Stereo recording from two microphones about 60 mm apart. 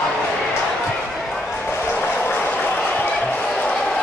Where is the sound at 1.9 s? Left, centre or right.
Left.